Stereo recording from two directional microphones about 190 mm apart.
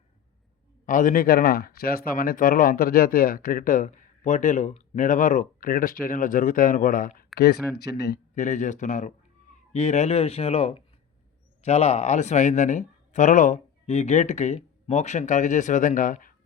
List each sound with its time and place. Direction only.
0.9 s speech: 45° left (ahead or behind)
7.3 s speech: 55° left (ahead or behind)
8.4 s speech: 40° left (ahead or behind)